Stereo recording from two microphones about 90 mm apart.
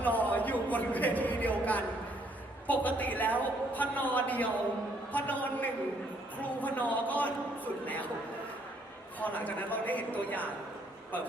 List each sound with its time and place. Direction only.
0.0 s a sound: 15° left (ahead or behind)
2.6 s a woman's voice: 20° left (ahead or behind)
9.2 s a woman's voice: 15° left (ahead or behind)